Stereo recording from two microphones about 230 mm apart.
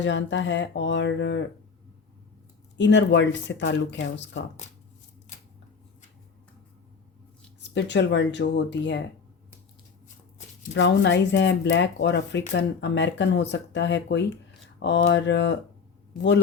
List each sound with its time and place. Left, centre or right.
0.0 s speech: left
2.7 s speech: left
7.6 s speech: left
10.8 s speech: left